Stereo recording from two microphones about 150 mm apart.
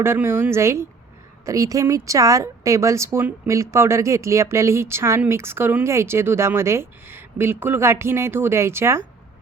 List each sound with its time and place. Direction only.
0.0 s a woman's voice: 15° right (ahead or behind)